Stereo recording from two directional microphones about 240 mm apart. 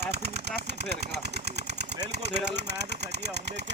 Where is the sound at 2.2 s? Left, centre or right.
Right.